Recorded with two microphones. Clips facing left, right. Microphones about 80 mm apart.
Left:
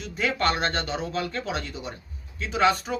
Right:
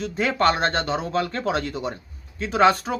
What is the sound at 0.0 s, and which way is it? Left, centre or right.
Speech, right.